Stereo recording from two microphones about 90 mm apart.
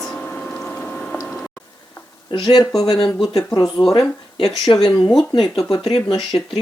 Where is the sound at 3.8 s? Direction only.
50° left (ahead or behind).